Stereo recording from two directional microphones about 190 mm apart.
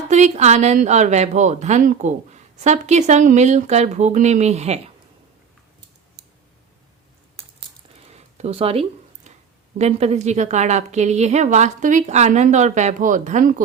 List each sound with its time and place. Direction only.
0.1 s speech: 35° right (ahead or behind)
8.1 s a sound: 35° right (ahead or behind)
9.7 s speech: 35° right (ahead or behind)